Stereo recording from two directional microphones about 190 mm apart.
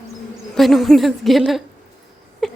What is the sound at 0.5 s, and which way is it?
Speech, centre (ahead or behind).